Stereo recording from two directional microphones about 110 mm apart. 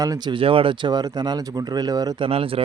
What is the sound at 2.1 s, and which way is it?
Speech, 55° right (ahead or behind).